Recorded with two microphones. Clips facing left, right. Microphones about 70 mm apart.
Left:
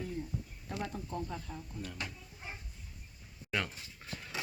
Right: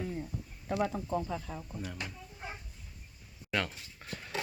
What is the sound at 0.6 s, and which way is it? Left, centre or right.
Speech, right.